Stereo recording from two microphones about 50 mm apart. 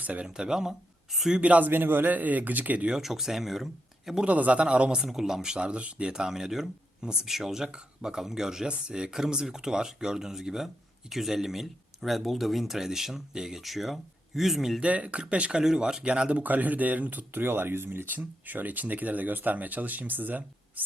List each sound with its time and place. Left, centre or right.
0.0 s speech: right
0.3 s speech: centre
1.4 s speech: right
2.9 s speech: centre
4.3 s speech: right
5.0 s speech: centre
5.5 s speech: right; by 6.7 s centre
7.0 s speech: centre
7.3 s speech: centre
14.8 s speech: right
15.6 s speech: centre
16.4 s speech: right